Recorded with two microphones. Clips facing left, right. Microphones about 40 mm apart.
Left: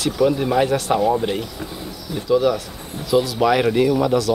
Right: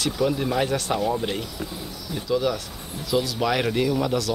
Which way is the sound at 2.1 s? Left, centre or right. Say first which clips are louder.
Left 6 dB; centre.